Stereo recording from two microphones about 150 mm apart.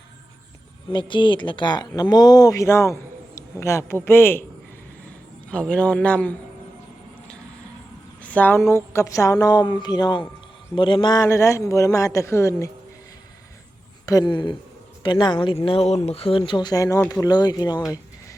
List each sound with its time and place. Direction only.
0.9 s a man's voice: 35° left (ahead or behind); by 4.4 s 15° left (ahead or behind)
5.5 s a man's voice: 5° left (ahead or behind)
8.2 s speech: 10° left (ahead or behind)
14.0 s speech: 25° left (ahead or behind); by 16.4 s 40° left (ahead or behind)
16.5 s speech: 30° left (ahead or behind)